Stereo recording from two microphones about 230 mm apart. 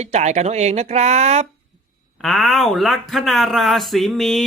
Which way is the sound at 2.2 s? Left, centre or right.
Centre.